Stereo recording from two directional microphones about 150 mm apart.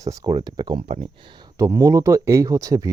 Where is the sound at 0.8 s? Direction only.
45° right (ahead or behind).